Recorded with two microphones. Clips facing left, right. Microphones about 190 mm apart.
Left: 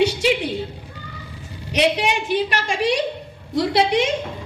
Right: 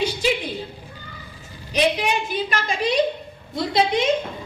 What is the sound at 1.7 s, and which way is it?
A woman's voice, 75° left (ahead or behind).